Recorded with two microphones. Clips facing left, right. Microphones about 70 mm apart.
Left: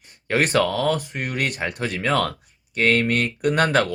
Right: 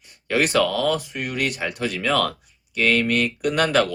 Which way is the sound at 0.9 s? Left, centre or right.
Left.